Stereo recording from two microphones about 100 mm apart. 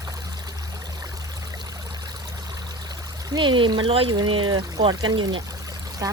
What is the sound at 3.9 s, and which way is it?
Speech, 70° right (ahead or behind).